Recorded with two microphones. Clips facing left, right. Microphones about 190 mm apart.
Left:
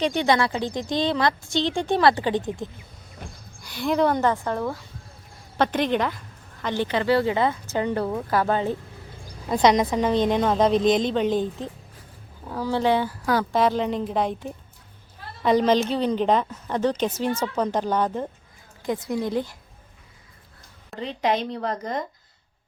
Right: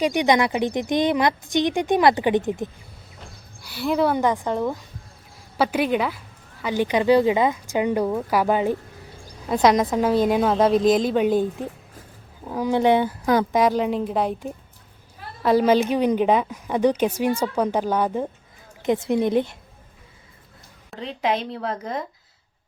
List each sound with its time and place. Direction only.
0.0 s a woman's voice: 15° right (ahead or behind)
3.6 s a woman's voice: 5° right (ahead or behind)
9.5 s a woman's voice: centre (ahead or behind)
18.8 s a woman's voice: 25° right (ahead or behind)
20.9 s a woman's voice: centre (ahead or behind)